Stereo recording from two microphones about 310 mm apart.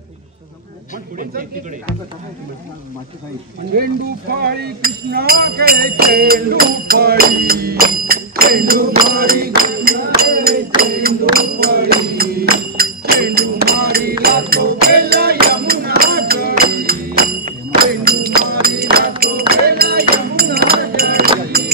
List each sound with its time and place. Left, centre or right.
4.4 s speech: right
10.8 s music: right